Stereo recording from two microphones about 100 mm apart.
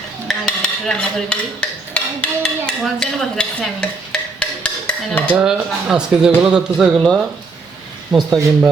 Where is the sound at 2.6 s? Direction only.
5° left (ahead or behind).